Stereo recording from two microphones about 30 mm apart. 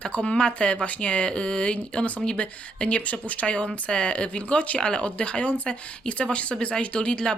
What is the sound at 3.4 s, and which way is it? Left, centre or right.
Speech, left.